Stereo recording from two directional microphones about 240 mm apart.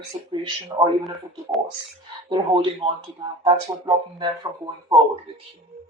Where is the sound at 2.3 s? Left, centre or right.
Centre.